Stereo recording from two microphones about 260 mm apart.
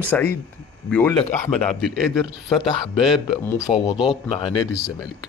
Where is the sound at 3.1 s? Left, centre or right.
Centre.